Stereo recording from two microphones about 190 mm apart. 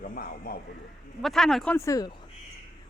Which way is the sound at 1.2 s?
Centre (ahead or behind).